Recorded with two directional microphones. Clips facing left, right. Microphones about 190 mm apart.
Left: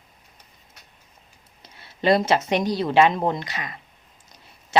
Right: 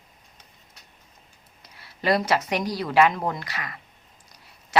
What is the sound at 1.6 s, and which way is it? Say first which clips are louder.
A woman's voice: left 5 dB; 25° left (ahead or behind).